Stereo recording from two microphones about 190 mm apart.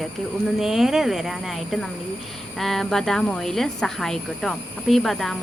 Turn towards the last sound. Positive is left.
turn(degrees=0)  # may be behind; listen again after turning